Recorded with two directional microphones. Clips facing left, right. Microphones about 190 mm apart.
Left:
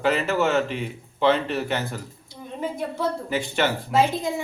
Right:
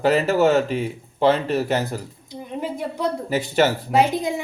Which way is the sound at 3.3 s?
40° right (ahead or behind).